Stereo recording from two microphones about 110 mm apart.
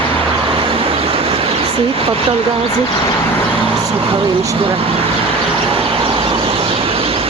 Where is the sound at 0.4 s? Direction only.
55° right (ahead or behind).